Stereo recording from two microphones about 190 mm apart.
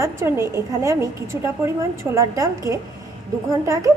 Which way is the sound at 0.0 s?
15° right (ahead or behind).